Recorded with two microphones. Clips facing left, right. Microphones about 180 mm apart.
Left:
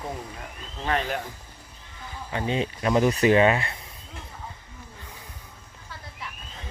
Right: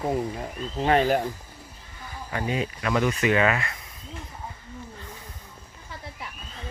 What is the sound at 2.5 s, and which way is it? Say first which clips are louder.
Speech: left 3 dB; 30° left (ahead or behind).